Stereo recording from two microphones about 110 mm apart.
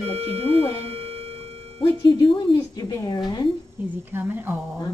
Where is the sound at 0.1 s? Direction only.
60° right (ahead or behind).